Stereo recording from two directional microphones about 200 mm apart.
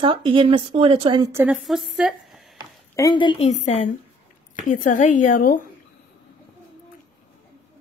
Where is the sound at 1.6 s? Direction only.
Centre (ahead or behind).